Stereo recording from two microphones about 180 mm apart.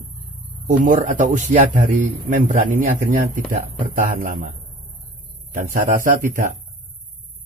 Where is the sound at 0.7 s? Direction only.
45° right (ahead or behind).